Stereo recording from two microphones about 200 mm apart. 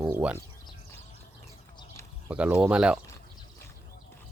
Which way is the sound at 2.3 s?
5° right (ahead or behind).